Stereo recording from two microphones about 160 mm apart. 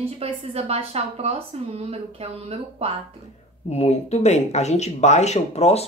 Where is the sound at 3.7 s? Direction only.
45° left (ahead or behind).